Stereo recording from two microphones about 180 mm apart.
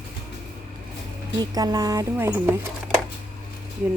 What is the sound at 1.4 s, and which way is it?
Speech, 20° right (ahead or behind).